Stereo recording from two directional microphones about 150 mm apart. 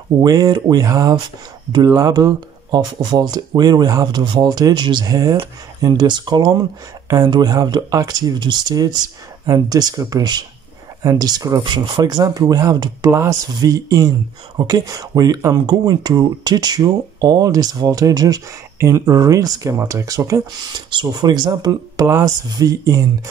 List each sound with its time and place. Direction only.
0.2 s speech: 25° right (ahead or behind)